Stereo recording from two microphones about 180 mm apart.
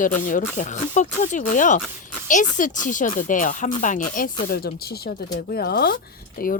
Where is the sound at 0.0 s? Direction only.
50° left (ahead or behind).